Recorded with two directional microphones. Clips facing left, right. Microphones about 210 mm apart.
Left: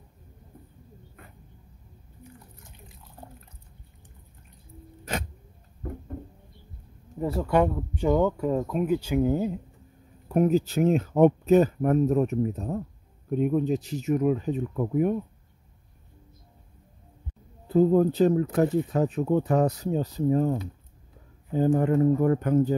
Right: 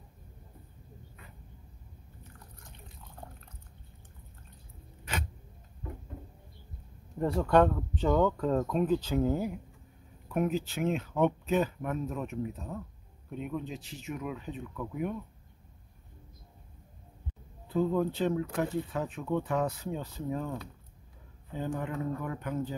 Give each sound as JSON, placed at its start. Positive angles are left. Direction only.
{"t": 5.8, "sound": "a sound", "side_deg": 45}
{"t": 7.2, "sound": "speech", "side_deg": 5}
{"t": 10.2, "sound": "speech", "side_deg": 35}
{"t": 17.6, "sound": "speech", "side_deg": 40}
{"t": 21.5, "sound": "speech", "side_deg": 45}